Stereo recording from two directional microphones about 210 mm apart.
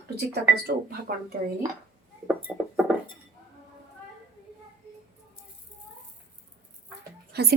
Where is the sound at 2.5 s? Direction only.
5° right (ahead or behind).